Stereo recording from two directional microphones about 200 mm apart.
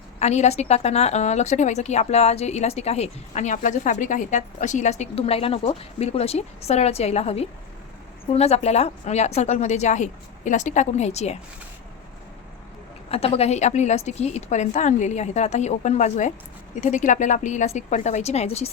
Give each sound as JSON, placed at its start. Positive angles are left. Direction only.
{"t": 0.2, "sound": "a woman's voice", "side_deg": 35}
{"t": 13.1, "sound": "a woman's voice", "side_deg": 30}